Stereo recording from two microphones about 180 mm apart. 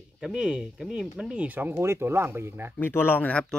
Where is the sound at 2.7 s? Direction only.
10° left (ahead or behind).